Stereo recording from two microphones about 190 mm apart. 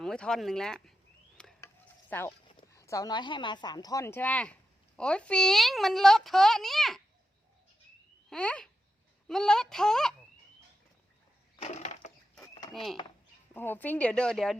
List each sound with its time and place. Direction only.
0.0 s speech: 5° left (ahead or behind)
1.4 s stir: 5° left (ahead or behind)
2.7 s a woman's voice: 15° left (ahead or behind); by 7.0 s centre (ahead or behind)
8.3 s speech: 5° left (ahead or behind)
11.6 s a sound: 35° left (ahead or behind)
12.4 s a sound: 15° left (ahead or behind)
12.7 s speech: centre (ahead or behind)